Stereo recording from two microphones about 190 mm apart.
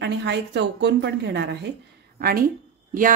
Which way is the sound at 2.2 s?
50° right (ahead or behind).